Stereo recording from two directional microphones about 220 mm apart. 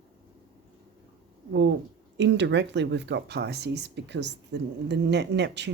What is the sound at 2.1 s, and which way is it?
Speech, 55° right (ahead or behind).